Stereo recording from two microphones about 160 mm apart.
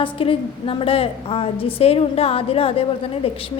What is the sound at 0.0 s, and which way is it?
A woman's voice, 35° left (ahead or behind).